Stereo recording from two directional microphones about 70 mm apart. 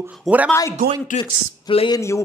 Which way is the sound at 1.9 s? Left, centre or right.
Left.